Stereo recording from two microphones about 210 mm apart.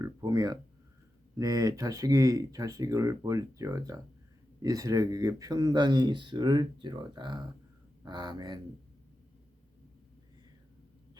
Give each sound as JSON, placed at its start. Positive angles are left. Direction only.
{"t": 0.0, "sound": "speech", "side_deg": -15}